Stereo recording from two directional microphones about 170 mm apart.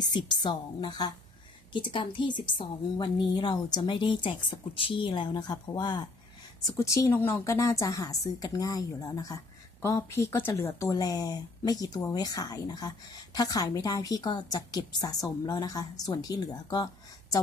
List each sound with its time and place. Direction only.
0.1 s a woman's voice: 25° left (ahead or behind)